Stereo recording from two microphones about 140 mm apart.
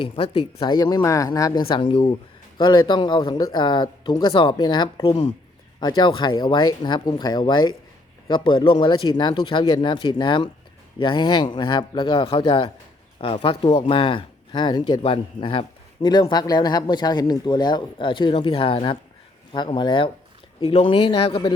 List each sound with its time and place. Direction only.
0.0 s speech: 35° left (ahead or behind)
1.6 s speech: 40° left (ahead or behind)